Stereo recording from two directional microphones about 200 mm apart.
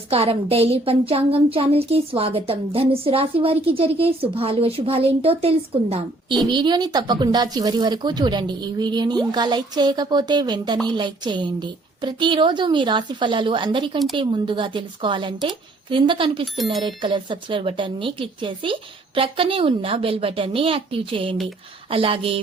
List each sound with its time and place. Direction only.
0.1 s speech: 30° right (ahead or behind)